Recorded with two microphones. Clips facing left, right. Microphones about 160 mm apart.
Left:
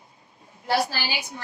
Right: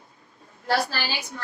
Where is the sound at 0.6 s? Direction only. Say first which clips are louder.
Even; 15° left (ahead or behind).